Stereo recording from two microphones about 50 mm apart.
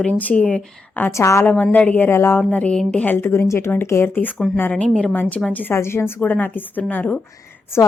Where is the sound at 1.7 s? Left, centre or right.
Left.